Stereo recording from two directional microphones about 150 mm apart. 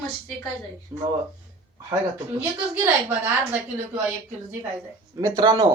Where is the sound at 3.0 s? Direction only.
10° right (ahead or behind).